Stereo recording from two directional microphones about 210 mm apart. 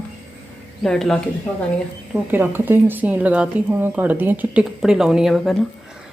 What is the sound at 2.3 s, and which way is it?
Speech, 10° right (ahead or behind).